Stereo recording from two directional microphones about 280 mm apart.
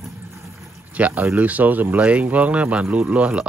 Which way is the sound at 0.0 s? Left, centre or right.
Centre.